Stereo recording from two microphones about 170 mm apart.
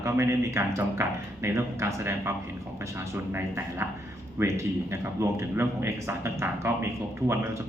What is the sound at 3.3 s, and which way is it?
Speech, 15° right (ahead or behind).